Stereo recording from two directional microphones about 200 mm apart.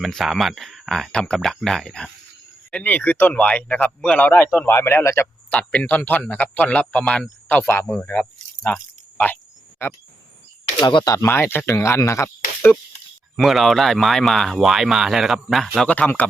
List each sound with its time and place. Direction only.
0.0 s speech: centre (ahead or behind)
8.6 s cricket: 5° left (ahead or behind)
10.8 s speech: 20° left (ahead or behind)
13.3 s speech: centre (ahead or behind)